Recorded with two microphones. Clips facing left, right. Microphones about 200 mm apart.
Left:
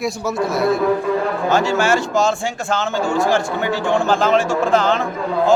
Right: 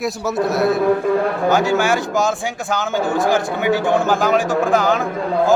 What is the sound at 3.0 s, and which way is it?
Speech, 20° right (ahead or behind).